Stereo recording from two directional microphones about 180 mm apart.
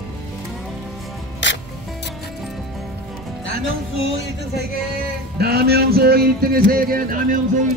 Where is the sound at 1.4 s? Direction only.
90° left.